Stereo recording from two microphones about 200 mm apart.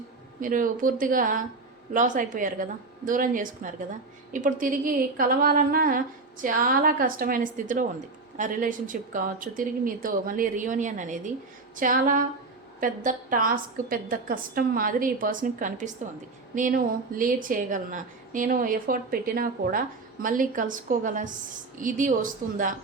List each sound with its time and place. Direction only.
0.4 s a woman's voice: 45° right (ahead or behind)